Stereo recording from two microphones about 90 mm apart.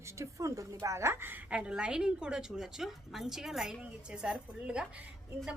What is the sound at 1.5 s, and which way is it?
A woman's voice, 10° right (ahead or behind).